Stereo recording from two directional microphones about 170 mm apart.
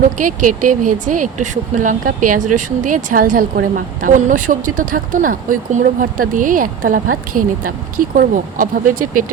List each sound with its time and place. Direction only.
0.0 s speech: 50° right (ahead or behind)